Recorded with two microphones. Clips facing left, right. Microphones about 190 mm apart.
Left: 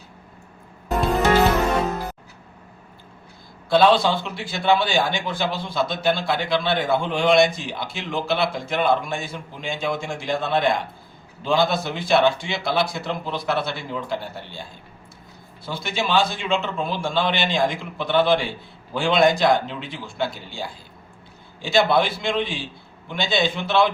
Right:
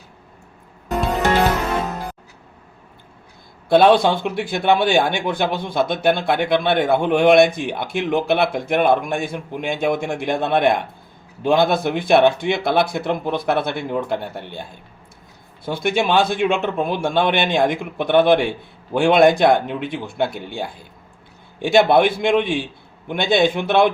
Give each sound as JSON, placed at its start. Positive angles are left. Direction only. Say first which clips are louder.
{"t": 3.7, "sound": "a man's voice", "louder": "right 4 dB", "side_deg": -55}